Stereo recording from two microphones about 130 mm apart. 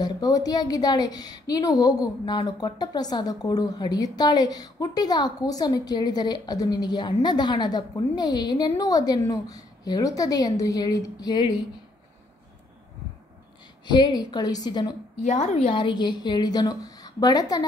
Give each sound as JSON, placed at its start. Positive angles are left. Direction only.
{"t": 0.0, "sound": "a woman's voice", "side_deg": 30}
{"t": 13.8, "sound": "a woman's voice", "side_deg": 35}
{"t": 15.2, "sound": "speech", "side_deg": 60}
{"t": 15.6, "sound": "a woman's voice", "side_deg": 40}